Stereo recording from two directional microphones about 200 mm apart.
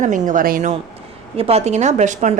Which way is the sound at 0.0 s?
40° right (ahead or behind).